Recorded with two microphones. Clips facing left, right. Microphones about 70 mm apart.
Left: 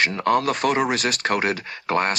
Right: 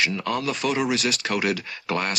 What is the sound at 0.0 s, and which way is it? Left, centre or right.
Speech, left.